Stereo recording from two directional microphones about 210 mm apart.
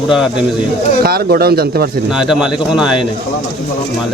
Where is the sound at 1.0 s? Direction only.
45° right (ahead or behind).